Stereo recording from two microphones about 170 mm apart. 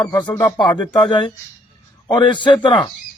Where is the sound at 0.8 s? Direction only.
25° left (ahead or behind).